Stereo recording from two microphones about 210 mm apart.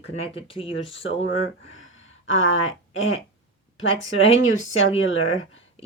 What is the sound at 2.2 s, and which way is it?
Speech, 70° left (ahead or behind).